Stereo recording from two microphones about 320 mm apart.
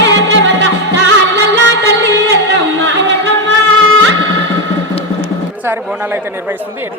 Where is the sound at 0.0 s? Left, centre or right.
Right.